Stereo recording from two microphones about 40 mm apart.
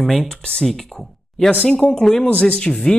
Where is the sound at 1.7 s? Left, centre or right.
Centre.